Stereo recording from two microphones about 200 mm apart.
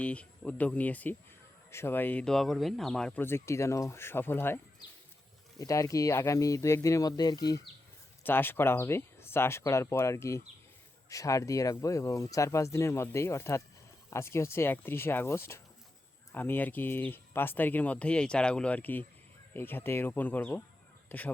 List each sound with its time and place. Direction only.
0.0 s speech: 5° left (ahead or behind)